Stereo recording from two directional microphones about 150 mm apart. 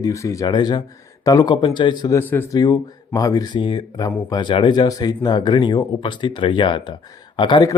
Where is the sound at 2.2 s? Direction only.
15° left (ahead or behind).